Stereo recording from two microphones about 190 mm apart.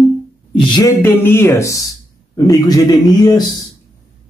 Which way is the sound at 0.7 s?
20° left (ahead or behind).